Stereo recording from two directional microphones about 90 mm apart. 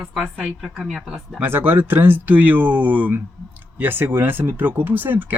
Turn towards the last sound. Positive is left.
turn(degrees=-20)  # may be behind; listen again after turning